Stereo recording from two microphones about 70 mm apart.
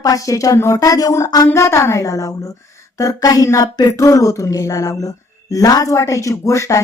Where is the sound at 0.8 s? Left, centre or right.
Left.